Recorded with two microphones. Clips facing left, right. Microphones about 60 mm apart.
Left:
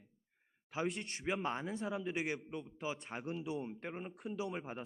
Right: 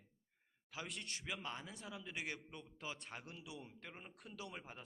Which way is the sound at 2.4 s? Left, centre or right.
Centre.